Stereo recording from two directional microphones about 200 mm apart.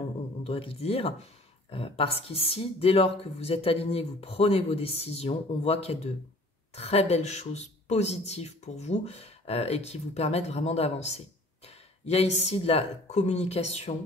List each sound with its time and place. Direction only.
0.4 s speech: 30° left (ahead or behind)